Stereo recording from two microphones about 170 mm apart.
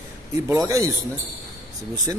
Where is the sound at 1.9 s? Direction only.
20° right (ahead or behind).